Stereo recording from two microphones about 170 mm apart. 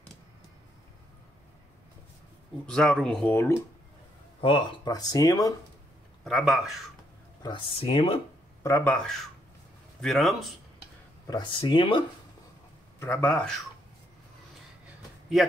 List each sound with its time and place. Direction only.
2.6 s speech: 5° left (ahead or behind)
4.4 s speech: 30° left (ahead or behind)
6.2 s speech: centre (ahead or behind)
7.4 s speech: 30° left (ahead or behind)
8.6 s speech: 10° left (ahead or behind)
11.2 s speech: 25° left (ahead or behind)
13.0 s speech: 10° left (ahead or behind)